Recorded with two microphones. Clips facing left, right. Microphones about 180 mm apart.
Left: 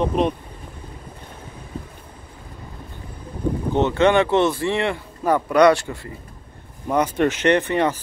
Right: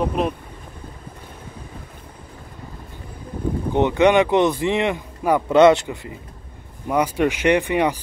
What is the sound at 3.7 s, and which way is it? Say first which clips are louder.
Speech: right 2 dB; 15° right (ahead or behind).